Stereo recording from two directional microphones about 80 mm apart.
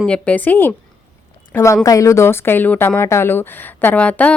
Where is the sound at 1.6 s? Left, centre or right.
Left.